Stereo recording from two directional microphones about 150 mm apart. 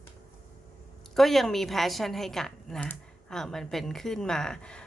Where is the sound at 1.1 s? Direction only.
Centre (ahead or behind).